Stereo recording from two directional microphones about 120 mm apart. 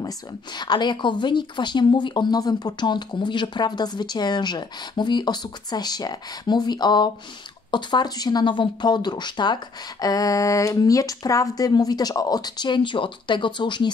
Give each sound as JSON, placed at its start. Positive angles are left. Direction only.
{"t": 0.6, "sound": "speech", "side_deg": 40}